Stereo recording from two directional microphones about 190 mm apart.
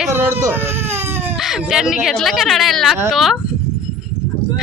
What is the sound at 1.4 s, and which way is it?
Speech, centre (ahead or behind).